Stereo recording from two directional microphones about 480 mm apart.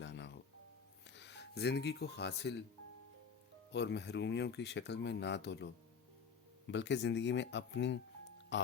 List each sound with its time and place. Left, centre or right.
0.0 s music: left
1.0 s speech: left
3.7 s speech: left
6.7 s speech: left